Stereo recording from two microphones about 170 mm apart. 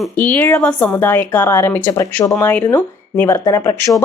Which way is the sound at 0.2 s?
10° left (ahead or behind).